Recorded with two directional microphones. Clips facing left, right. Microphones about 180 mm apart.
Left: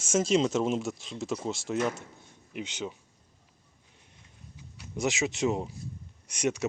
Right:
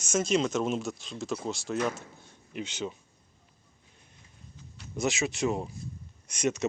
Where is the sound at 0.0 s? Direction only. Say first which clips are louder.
Left 2 dB; 25° left (ahead or behind).